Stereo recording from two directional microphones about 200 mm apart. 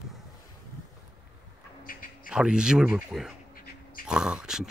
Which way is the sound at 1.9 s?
45° left (ahead or behind).